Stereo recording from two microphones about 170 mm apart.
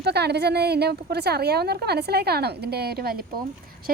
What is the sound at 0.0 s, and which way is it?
A woman's voice, 80° right.